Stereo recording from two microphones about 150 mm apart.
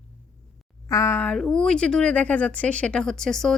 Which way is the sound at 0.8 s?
20° left (ahead or behind).